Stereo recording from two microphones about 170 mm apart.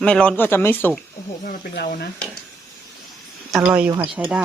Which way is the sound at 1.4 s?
65° left (ahead or behind).